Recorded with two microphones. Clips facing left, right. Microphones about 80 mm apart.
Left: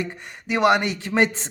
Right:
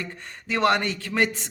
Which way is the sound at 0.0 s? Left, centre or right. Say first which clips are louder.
Left 5 dB; centre.